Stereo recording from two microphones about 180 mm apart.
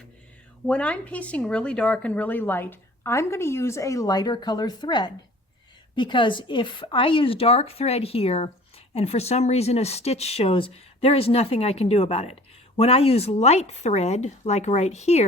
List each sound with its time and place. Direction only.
0.7 s speech: 5° left (ahead or behind); by 15.2 s 40° left (ahead or behind)